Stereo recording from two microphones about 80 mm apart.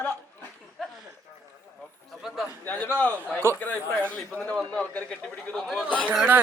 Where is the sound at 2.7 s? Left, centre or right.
Left.